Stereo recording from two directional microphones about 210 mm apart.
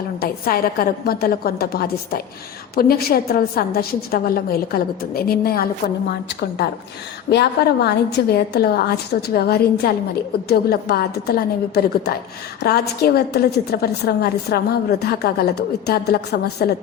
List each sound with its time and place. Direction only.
0.4 s a woman's voice: 45° left (ahead or behind)